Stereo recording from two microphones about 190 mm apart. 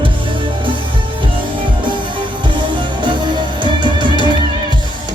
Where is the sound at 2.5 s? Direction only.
25° right (ahead or behind).